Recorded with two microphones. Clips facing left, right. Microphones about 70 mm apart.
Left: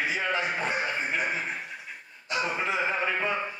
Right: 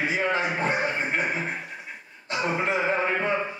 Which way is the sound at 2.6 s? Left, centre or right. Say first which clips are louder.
Right 3 dB; right.